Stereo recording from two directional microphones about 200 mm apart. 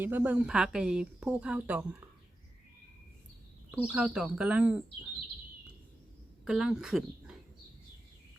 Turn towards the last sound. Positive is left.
turn(degrees=0)  # may be behind; listen again after turning